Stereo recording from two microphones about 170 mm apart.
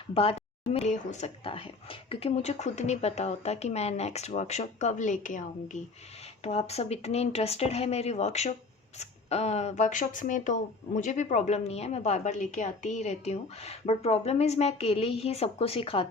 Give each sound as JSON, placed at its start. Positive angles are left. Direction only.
{"t": 0.1, "sound": "speech", "side_deg": 35}